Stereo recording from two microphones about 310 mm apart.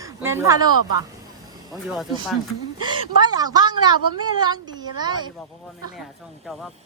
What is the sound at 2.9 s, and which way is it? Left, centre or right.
A woman's voice, centre.